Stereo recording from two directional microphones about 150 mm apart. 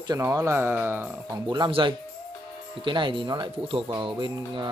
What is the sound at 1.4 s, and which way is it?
Speech, 30° right (ahead or behind).